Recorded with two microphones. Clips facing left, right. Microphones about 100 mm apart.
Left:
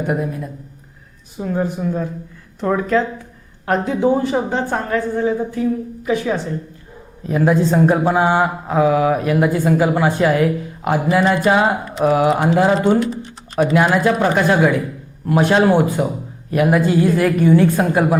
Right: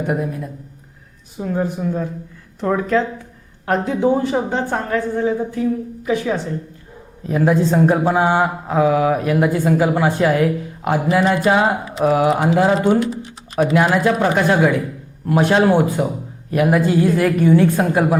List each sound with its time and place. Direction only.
0.0 s a man's voice: 30° left (ahead or behind)
11.9 s speech: centre (ahead or behind)
13.7 s a man's voice: 35° left (ahead or behind)